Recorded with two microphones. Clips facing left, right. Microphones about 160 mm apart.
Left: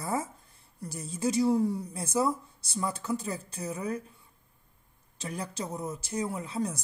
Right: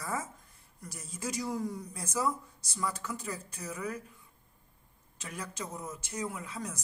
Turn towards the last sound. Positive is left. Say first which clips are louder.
# left 8 dB
turn(degrees=30)  # may be behind; listen again after turning